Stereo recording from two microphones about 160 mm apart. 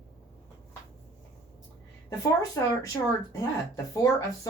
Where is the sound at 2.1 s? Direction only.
20° left (ahead or behind).